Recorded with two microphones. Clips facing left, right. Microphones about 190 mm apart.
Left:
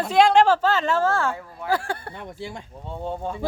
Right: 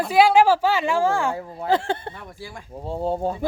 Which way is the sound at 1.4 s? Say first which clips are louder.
Right 3 dB; 25° right (ahead or behind).